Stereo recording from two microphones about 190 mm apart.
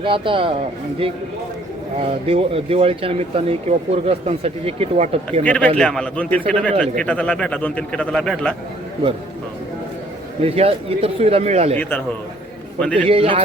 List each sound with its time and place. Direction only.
0.0 s a man's voice: 25° right (ahead or behind)
2.0 s speech: 30° right (ahead or behind)
5.4 s a man's voice: 5° left (ahead or behind)
10.4 s speech: 30° right (ahead or behind)
11.8 s a man's voice: 10° left (ahead or behind)
13.1 s a man's voice: 30° right (ahead or behind)